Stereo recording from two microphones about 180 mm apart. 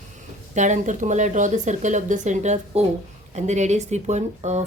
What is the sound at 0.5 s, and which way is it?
A woman's voice, 40° right (ahead or behind).